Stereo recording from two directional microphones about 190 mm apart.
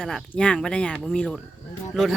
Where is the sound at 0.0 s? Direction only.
Centre (ahead or behind).